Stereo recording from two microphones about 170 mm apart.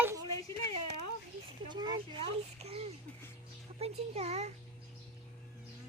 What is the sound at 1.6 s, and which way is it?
Speech, 25° right (ahead or behind).